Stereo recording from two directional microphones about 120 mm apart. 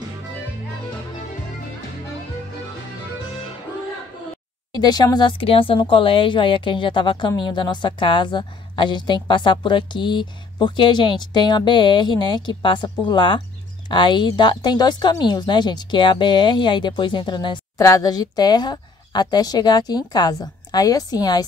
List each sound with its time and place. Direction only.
4.7 s a woman's voice: 35° left (ahead or behind)
5.4 s a woman's voice: 50° left (ahead or behind)
17.7 s a woman's voice: 30° left (ahead or behind)